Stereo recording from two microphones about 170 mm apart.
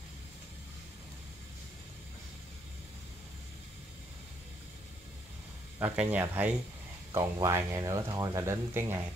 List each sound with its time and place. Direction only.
5.8 s speech: 10° right (ahead or behind)